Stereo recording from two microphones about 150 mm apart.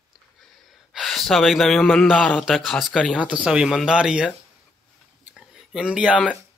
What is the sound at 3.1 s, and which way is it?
Speech, 5° right (ahead or behind).